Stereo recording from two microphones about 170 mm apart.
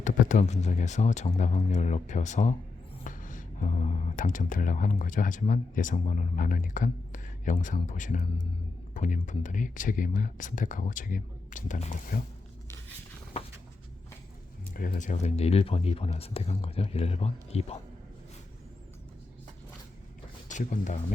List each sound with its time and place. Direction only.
0.0 s speech: 50° left (ahead or behind)
14.7 s speech: 55° left (ahead or behind); by 17.7 s 40° left (ahead or behind)
20.5 s speech: 45° left (ahead or behind)